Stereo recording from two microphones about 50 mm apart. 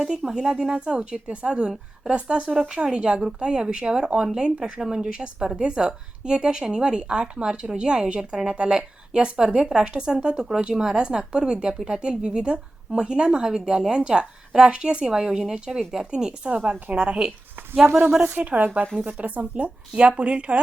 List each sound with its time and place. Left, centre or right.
0.0 s a woman's voice: centre
16.6 s speech: right
17.8 s speech: right
18.5 s speech: right